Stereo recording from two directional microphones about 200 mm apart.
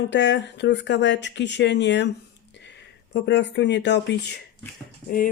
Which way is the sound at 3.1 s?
60° left (ahead or behind).